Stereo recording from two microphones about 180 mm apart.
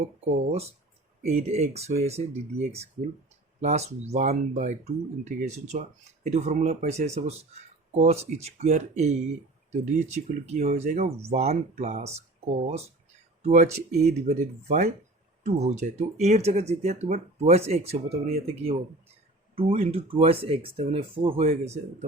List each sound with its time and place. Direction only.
0.3 s speech: 35° right (ahead or behind)